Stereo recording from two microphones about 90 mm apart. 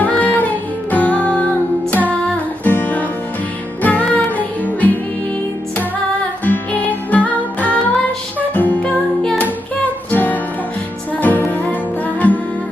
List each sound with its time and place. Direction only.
0.0 s music: 15° left (ahead or behind)
6.4 s music: 20° left (ahead or behind)
10.1 s music: 20° left (ahead or behind)